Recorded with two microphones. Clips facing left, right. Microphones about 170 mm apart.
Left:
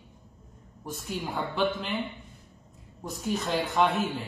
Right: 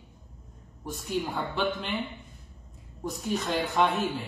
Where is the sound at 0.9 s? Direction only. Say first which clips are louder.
Right 3 dB; centre (ahead or behind).